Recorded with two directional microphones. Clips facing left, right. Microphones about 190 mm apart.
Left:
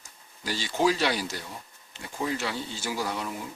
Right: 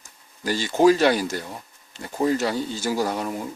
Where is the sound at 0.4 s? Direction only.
50° right (ahead or behind).